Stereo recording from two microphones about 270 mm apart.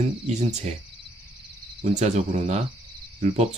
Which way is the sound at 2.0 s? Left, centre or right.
Right.